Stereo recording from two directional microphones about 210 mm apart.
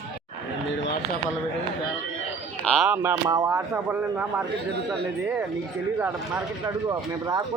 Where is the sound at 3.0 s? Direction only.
15° right (ahead or behind).